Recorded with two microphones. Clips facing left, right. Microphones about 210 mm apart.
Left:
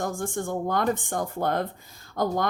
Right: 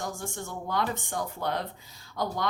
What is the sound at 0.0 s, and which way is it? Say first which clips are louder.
Speech: left 7 dB; 50° left (ahead or behind).